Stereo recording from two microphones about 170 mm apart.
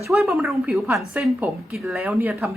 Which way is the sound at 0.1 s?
Centre (ahead or behind).